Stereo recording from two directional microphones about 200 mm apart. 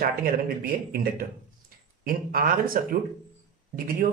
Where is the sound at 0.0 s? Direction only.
50° right (ahead or behind).